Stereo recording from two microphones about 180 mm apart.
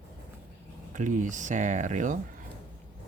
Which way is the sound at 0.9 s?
45° right (ahead or behind).